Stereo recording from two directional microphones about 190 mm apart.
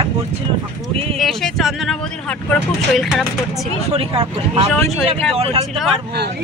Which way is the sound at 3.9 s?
30° right (ahead or behind).